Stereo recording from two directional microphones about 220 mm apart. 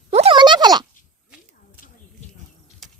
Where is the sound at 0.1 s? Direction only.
25° right (ahead or behind).